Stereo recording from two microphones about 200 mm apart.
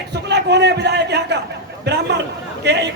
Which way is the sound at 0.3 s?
55° right (ahead or behind).